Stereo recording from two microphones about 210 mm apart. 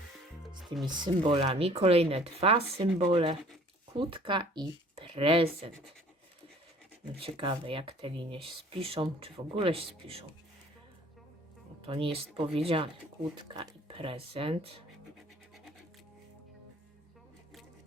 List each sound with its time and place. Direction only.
0.6 s music: centre (ahead or behind)
0.9 s speech: 20° right (ahead or behind)
7.2 s speech: 25° right (ahead or behind)
12.1 s speech: 25° right (ahead or behind)